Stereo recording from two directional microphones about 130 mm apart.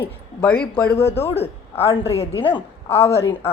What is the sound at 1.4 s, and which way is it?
A woman's voice, 50° left (ahead or behind).